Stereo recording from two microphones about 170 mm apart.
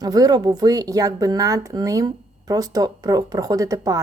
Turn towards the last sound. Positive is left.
turn(degrees=-20)  # may be behind; listen again after turning